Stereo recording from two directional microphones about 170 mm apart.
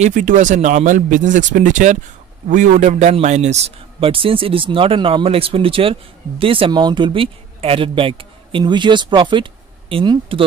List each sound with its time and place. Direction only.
0.0 s a man's voice: 50° right (ahead or behind); by 10.4 s 30° right (ahead or behind)